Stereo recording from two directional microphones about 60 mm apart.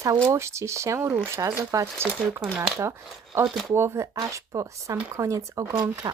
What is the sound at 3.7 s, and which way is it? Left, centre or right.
Speech, right.